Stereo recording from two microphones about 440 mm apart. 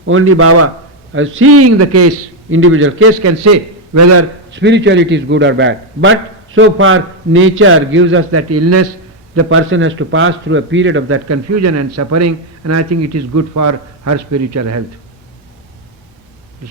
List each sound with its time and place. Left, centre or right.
0.0 s a man's voice: right